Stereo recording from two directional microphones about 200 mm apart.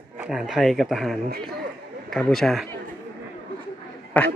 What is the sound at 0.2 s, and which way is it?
Speech, 5° right (ahead or behind).